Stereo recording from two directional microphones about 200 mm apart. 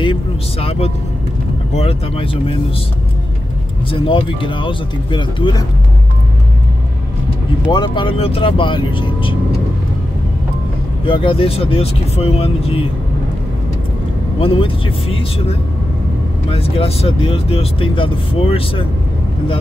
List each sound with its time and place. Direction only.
0.0 s speech: 30° left (ahead or behind)
3.9 s speech: 25° left (ahead or behind)
7.7 s speech: 20° left (ahead or behind)
11.1 s speech: 25° left (ahead or behind)
14.4 s speech: 30° left (ahead or behind)